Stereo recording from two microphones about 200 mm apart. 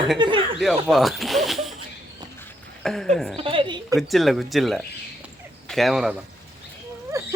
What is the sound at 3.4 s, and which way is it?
Speech, 25° right (ahead or behind).